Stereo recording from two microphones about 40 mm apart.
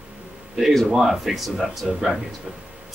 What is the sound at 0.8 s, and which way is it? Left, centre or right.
Speech, centre.